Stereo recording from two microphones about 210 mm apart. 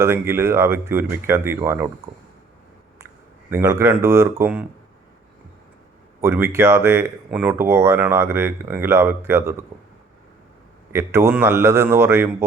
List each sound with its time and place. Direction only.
0.0 s speech: 10° right (ahead or behind)
3.5 s speech: 15° right (ahead or behind)
6.2 s speech: 15° right (ahead or behind)
10.9 s speech: 10° right (ahead or behind)